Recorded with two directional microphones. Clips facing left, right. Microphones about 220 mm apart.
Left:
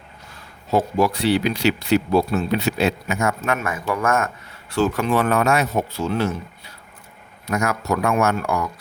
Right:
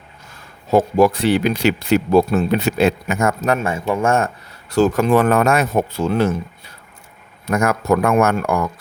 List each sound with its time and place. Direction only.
0.7 s speech: 50° right (ahead or behind); by 4.3 s 30° right (ahead or behind)
4.7 s speech: 45° right (ahead or behind)